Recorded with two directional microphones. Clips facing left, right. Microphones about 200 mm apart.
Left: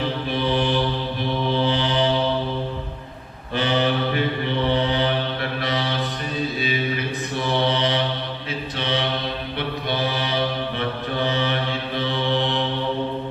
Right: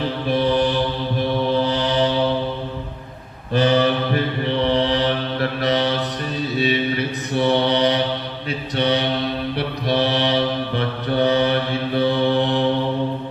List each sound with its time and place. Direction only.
3.5 s mantra: 40° right (ahead or behind)
7.3 s mantra: 35° right (ahead or behind)
11.2 s mantra: 35° right (ahead or behind)